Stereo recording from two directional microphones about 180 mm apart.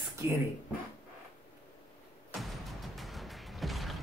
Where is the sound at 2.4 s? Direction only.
Centre (ahead or behind).